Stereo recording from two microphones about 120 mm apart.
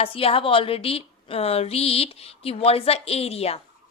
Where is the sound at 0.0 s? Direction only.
55° left (ahead or behind).